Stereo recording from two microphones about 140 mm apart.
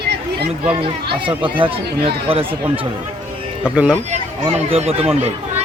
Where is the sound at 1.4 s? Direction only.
40° right (ahead or behind).